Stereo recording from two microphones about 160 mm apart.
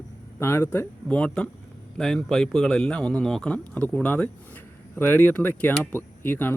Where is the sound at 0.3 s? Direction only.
15° left (ahead or behind).